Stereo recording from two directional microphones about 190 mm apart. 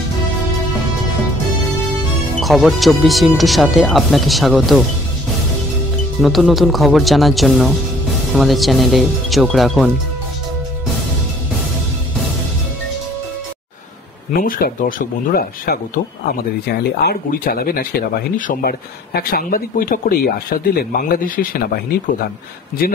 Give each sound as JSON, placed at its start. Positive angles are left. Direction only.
{"t": 2.4, "sound": "speech", "side_deg": 0}
{"t": 6.2, "sound": "speech", "side_deg": 0}
{"t": 14.3, "sound": "speech", "side_deg": 50}